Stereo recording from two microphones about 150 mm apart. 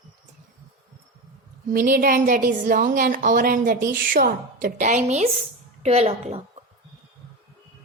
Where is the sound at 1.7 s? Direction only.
70° right (ahead or behind); by 6.4 s 45° right (ahead or behind).